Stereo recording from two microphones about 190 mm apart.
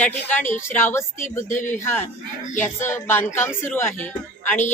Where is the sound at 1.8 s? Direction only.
10° left (ahead or behind).